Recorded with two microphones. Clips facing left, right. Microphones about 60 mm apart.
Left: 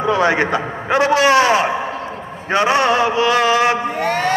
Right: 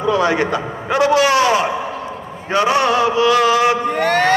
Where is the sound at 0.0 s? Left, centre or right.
Left.